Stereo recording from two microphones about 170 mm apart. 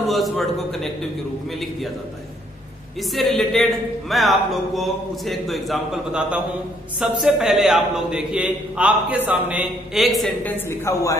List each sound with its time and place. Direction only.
0.1 s a man's voice: centre (ahead or behind)
3.0 s a man's voice: centre (ahead or behind)
10.7 s a woman's voice: 15° left (ahead or behind)